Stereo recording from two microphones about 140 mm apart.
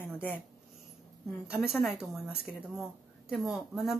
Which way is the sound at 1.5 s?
5° right (ahead or behind).